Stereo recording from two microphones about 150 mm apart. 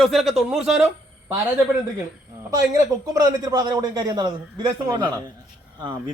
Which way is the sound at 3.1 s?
25° right (ahead or behind).